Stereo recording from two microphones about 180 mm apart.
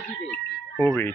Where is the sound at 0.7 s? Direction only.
15° left (ahead or behind).